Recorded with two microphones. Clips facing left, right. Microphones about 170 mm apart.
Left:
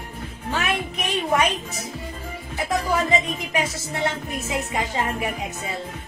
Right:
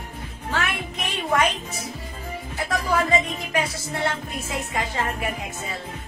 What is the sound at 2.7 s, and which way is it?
Speech, 20° left (ahead or behind).